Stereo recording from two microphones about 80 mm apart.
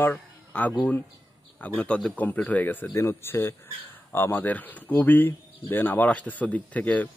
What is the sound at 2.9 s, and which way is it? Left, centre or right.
Speech, left.